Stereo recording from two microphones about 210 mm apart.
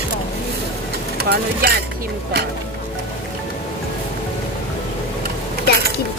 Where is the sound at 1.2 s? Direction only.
50° right (ahead or behind).